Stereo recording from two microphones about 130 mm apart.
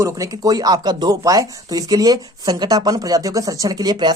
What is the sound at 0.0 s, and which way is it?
Speech, 25° right (ahead or behind).